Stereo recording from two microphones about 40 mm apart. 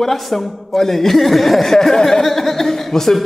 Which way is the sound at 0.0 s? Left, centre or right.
Centre.